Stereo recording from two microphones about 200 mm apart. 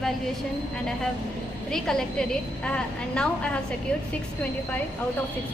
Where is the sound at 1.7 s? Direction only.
Centre (ahead or behind).